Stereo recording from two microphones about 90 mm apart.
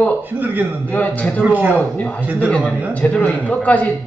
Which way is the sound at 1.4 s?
15° right (ahead or behind).